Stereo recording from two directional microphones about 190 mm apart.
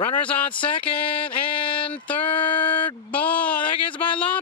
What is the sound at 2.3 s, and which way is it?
Speech, 25° left (ahead or behind).